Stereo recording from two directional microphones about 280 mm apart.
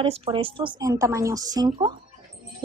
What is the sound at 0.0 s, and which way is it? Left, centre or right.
A woman's voice, centre.